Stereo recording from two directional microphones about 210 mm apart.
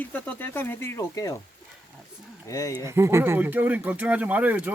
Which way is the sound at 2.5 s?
15° left (ahead or behind).